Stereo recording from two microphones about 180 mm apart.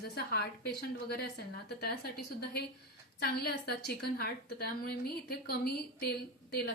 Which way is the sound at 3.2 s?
60° left (ahead or behind).